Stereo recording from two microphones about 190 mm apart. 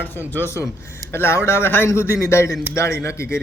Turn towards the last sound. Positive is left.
turn(degrees=15)  # may be behind; listen again after turning